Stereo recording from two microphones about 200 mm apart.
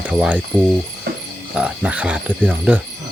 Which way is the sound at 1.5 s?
5° right (ahead or behind).